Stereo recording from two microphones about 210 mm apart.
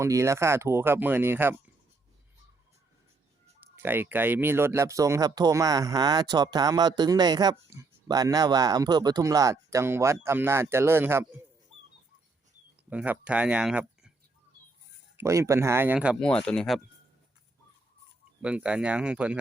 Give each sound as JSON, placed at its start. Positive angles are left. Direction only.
{"t": 0.0, "sound": "speech", "side_deg": -15}
{"t": 3.6, "sound": "speech", "side_deg": -10}
{"t": 12.9, "sound": "speech", "side_deg": -5}
{"t": 15.1, "sound": "speech", "side_deg": -15}
{"t": 16.2, "sound": "speech", "side_deg": 5}
{"t": 18.4, "sound": "speech", "side_deg": -5}